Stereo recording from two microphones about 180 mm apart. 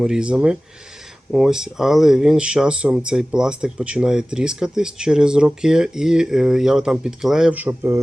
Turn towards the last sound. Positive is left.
turn(degrees=-10)  # may be behind; listen again after turning